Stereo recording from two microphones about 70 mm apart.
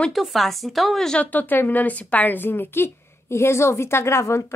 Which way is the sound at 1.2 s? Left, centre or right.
Left.